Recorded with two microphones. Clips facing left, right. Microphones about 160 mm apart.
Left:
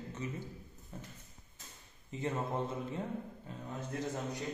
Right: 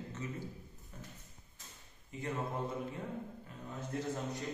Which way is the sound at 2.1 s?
25° left (ahead or behind).